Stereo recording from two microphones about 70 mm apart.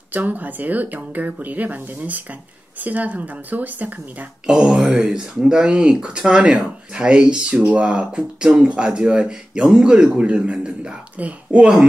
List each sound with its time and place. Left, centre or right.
0.1 s speech: right
4.5 s speech: centre